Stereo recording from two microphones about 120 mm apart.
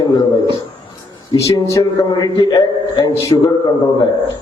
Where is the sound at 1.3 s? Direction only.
25° left (ahead or behind).